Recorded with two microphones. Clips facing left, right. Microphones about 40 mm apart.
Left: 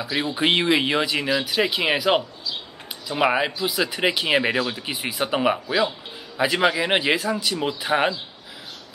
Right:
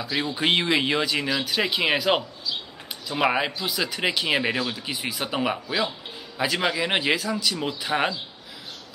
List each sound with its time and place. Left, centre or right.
0.2 s a man's voice: centre